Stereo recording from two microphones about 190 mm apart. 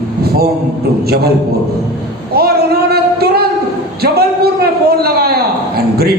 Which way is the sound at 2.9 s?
55° right (ahead or behind).